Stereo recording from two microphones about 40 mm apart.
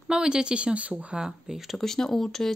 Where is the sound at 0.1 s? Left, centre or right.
Right.